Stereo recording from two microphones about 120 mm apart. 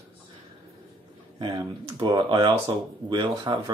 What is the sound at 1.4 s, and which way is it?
Speech, 40° right (ahead or behind).